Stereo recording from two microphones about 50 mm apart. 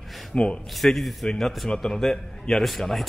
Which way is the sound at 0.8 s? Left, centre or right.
Centre.